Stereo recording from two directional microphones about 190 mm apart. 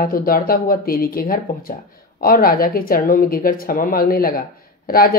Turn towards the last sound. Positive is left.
turn(degrees=50)  # may be behind; listen again after turning